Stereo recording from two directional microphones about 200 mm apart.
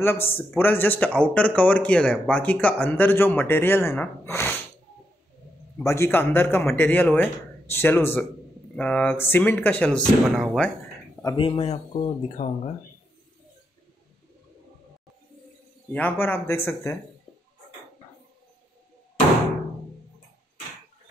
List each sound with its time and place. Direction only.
0.0 s speech: 10° left (ahead or behind)
5.8 s speech: 15° left (ahead or behind)
11.3 s speech: 25° left (ahead or behind)
15.9 s speech: 10° left (ahead or behind)